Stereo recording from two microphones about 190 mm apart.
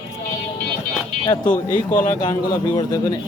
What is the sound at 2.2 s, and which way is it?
Speech, 20° left (ahead or behind).